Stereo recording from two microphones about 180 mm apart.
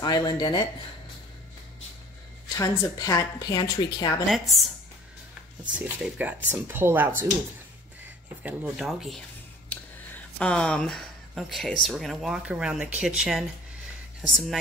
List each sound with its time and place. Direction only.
0.0 s a woman's voice: 20° left (ahead or behind)
2.5 s a woman's voice: 20° left (ahead or behind)
4.3 s speech: centre (ahead or behind)
5.8 s speech: 5° right (ahead or behind)
8.4 s speech: 5° right (ahead or behind)
10.4 s speech: 5° left (ahead or behind)